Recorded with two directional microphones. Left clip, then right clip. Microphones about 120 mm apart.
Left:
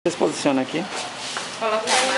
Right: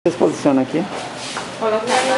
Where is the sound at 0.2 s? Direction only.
25° left (ahead or behind).